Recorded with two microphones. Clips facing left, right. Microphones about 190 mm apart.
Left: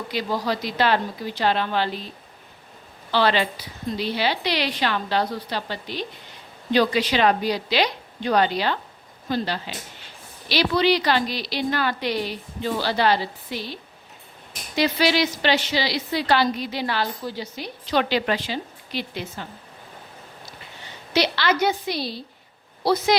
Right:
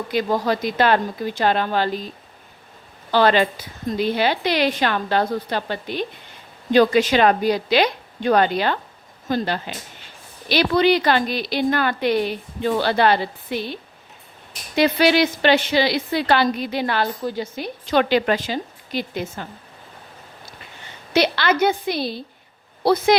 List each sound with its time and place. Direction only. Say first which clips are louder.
0.1 s a woman's voice: right 5 dB; 50° right (ahead or behind)
3.1 s a woman's voice: right 4 dB; 50° right (ahead or behind)
14.8 s a woman's voice: right 4 dB; 55° right (ahead or behind)
21.1 s a woman's voice: right 3 dB; 55° right (ahead or behind)